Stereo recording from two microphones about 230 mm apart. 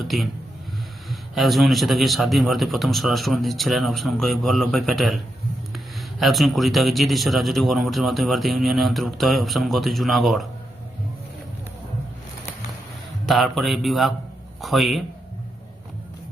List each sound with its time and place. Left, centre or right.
0.0 s speech: centre
1.4 s speech: centre
13.2 s a man's voice: centre